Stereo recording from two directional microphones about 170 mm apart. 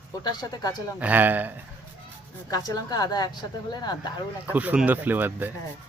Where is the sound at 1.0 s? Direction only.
10° right (ahead or behind).